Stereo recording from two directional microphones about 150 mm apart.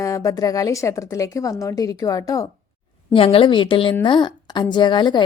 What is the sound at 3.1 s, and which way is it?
A woman's voice, 40° left (ahead or behind).